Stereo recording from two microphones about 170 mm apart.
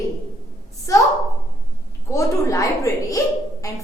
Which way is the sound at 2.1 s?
20° left (ahead or behind).